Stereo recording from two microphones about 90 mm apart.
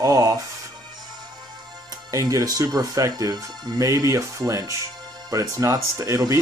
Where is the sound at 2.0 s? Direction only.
35° right (ahead or behind).